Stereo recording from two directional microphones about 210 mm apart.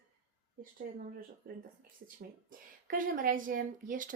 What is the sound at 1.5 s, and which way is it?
A woman's voice, 45° right (ahead or behind).